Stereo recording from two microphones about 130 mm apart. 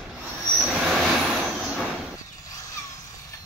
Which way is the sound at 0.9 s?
5° right (ahead or behind).